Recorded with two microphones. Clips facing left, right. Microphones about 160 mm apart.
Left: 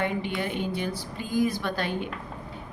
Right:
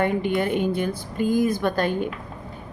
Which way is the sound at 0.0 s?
50° right (ahead or behind).